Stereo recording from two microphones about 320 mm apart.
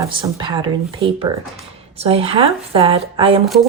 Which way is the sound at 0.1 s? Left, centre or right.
Centre.